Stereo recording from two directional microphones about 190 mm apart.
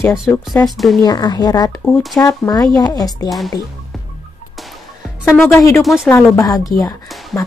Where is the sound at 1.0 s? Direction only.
20° left (ahead or behind).